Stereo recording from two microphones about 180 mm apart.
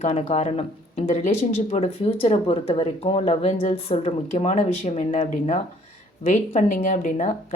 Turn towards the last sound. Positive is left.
turn(degrees=40)  # may be behind; listen again after turning